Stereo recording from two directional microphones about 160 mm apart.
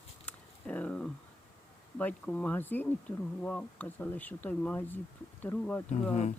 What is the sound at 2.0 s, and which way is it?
Speech, 10° left (ahead or behind).